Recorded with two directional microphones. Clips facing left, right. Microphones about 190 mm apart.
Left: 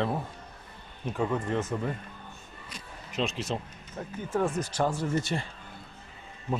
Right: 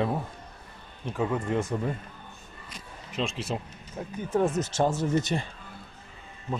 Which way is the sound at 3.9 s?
15° right (ahead or behind).